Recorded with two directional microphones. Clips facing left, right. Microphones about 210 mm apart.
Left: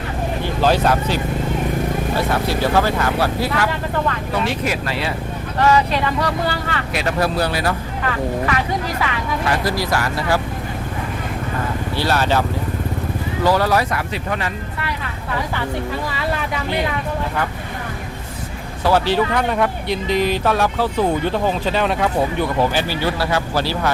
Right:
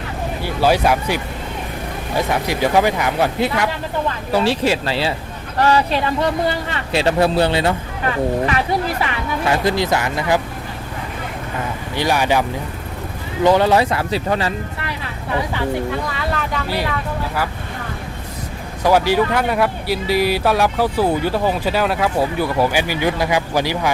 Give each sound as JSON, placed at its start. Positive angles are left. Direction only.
{"t": 0.4, "sound": "speech", "side_deg": -10}
{"t": 4.3, "sound": "speech", "side_deg": -30}
{"t": 9.5, "sound": "speech", "side_deg": -20}
{"t": 11.9, "sound": "speech", "side_deg": -15}
{"t": 18.8, "sound": "speech", "side_deg": -10}